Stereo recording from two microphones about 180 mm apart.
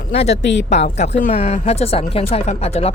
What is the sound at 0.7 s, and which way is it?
A woman's voice, 40° left (ahead or behind).